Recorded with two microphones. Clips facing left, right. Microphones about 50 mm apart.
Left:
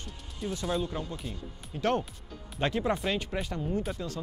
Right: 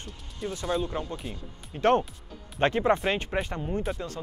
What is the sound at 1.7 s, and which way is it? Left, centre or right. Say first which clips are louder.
Speech: right 6 dB; right.